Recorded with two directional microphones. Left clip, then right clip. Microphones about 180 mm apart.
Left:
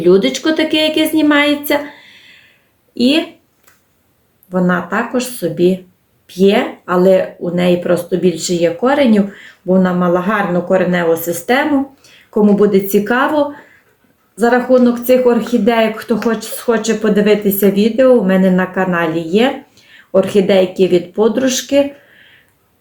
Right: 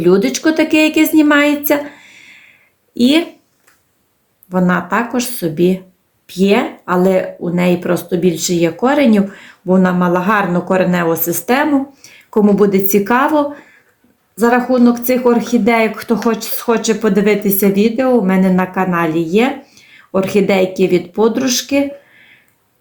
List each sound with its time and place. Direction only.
0.4 s speech: 40° right (ahead or behind)
4.5 s speech: 40° right (ahead or behind)